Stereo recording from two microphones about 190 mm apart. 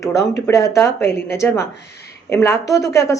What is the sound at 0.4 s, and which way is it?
A woman's voice, 15° left (ahead or behind).